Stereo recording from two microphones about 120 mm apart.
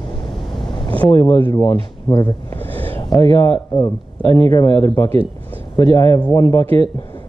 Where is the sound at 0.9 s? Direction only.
15° left (ahead or behind).